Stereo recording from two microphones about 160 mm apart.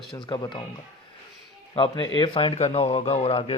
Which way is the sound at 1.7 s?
30° left (ahead or behind).